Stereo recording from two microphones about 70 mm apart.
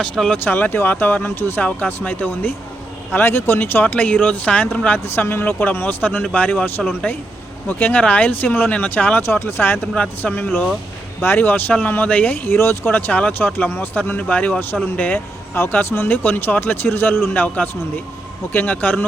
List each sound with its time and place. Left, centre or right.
0.0 s speech: centre
0.4 s speech: left
9.2 s speech: left
9.8 s speech: centre
12.5 s speech: left
13.1 s speech: left
18.5 s speech: left